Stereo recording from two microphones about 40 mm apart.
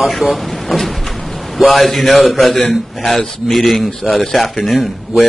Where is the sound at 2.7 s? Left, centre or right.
Centre.